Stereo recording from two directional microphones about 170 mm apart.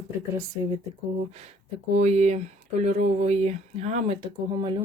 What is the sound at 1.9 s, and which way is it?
Speech, 40° right (ahead or behind).